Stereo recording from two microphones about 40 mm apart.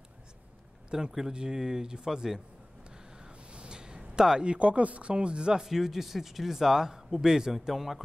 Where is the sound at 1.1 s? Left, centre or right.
Centre.